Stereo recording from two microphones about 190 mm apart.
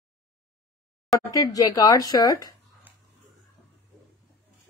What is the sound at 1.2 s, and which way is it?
Speech, 20° left (ahead or behind).